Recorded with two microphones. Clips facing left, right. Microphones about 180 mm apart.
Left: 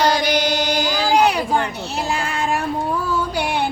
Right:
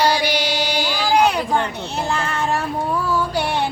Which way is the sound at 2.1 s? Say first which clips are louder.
Even; 10° left (ahead or behind).